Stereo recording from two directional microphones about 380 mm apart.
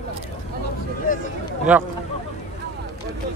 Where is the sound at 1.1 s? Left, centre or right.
Left.